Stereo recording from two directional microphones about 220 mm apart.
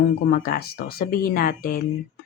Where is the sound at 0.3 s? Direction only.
40° left (ahead or behind).